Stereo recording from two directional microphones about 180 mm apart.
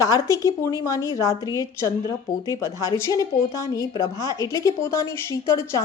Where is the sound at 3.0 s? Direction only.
20° left (ahead or behind).